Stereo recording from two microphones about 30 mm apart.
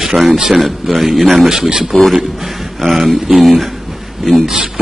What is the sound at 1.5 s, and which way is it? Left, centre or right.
Speech, right.